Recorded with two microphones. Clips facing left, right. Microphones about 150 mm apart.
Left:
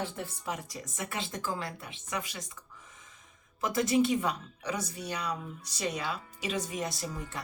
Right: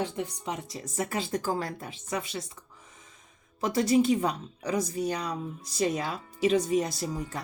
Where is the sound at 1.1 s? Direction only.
40° right (ahead or behind).